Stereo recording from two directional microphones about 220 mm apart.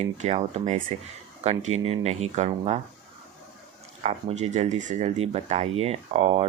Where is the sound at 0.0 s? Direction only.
30° right (ahead or behind).